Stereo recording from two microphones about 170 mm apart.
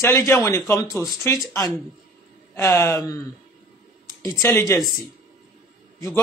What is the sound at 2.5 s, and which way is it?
Speech, 15° left (ahead or behind).